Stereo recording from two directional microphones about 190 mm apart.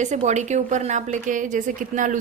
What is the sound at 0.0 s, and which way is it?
A woman's voice, 40° right (ahead or behind).